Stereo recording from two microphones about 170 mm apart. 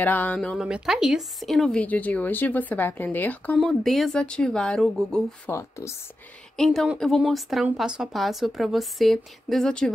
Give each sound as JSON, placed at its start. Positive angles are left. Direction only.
{"t": 0.0, "sound": "speech", "side_deg": 10}
{"t": 0.7, "sound": "a woman's voice", "side_deg": -5}
{"t": 5.5, "sound": "speech", "side_deg": 15}
{"t": 6.5, "sound": "a woman's voice", "side_deg": 0}